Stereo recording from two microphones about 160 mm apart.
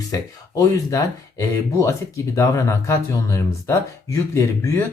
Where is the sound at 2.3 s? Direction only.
20° left (ahead or behind).